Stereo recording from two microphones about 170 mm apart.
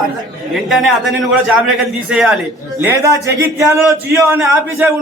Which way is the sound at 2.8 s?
15° right (ahead or behind).